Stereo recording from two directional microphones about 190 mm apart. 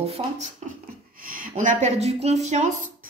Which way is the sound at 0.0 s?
35° right (ahead or behind).